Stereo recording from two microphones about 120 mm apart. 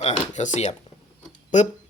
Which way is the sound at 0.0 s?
85° left.